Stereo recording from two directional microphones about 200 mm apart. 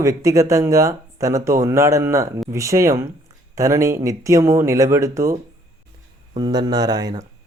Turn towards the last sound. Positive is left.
turn(degrees=-20)  # may be behind; listen again after turning